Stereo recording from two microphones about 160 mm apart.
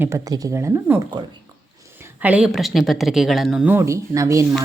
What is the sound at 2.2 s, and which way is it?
A woman's voice, 10° right (ahead or behind).